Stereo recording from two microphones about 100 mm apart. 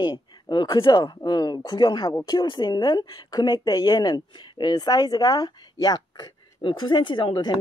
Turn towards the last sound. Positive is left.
turn(degrees=45)  # may be behind; listen again after turning